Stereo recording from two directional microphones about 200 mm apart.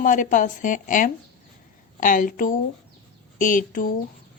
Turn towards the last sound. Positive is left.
turn(degrees=45)  # may be behind; listen again after turning